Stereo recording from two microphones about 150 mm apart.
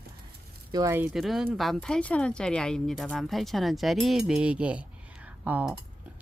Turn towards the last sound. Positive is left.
turn(degrees=-10)  # may be behind; listen again after turning